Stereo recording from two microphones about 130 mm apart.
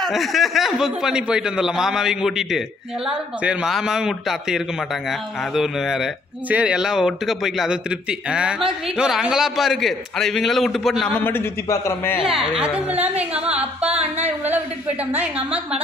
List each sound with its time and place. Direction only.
0.0 s a man's voice: centre (ahead or behind)
11.1 s a man's voice: 15° left (ahead or behind)
12.2 s a woman's voice: 5° right (ahead or behind)